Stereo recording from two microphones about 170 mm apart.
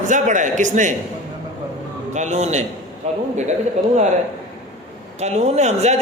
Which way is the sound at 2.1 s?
40° right (ahead or behind).